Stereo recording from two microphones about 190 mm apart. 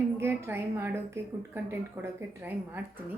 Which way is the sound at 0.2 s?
15° right (ahead or behind).